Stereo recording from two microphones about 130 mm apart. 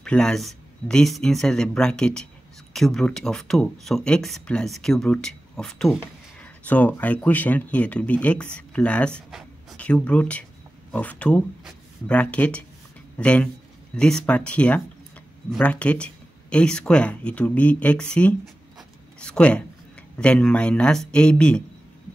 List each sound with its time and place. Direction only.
0.0 s speech: 5° left (ahead or behind)